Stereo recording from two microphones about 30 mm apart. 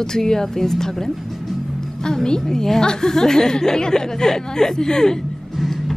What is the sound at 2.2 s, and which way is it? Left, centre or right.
Speech, left.